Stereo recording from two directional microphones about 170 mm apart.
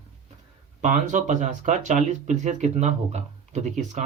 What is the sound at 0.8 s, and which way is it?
Speech, 50° right (ahead or behind).